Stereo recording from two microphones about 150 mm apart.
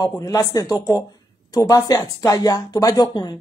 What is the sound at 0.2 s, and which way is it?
Speech, 25° left (ahead or behind).